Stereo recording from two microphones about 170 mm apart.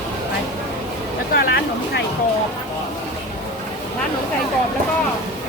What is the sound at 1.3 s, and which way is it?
Speech, 75° left (ahead or behind).